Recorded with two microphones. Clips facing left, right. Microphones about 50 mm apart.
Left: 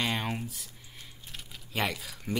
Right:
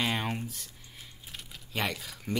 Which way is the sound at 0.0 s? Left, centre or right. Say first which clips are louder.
Even; centre.